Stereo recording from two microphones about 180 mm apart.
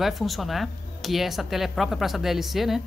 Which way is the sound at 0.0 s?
Centre (ahead or behind).